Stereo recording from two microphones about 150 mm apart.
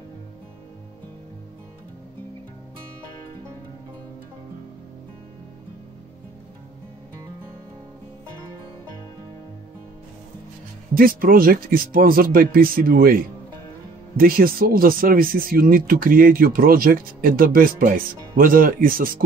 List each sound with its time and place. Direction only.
11.0 s speech: 75° right (ahead or behind)